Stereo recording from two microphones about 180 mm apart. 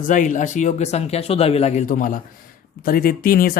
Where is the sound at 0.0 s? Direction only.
45° left (ahead or behind).